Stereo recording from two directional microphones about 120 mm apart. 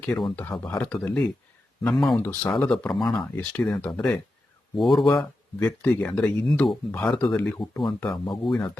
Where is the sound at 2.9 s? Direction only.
Centre (ahead or behind).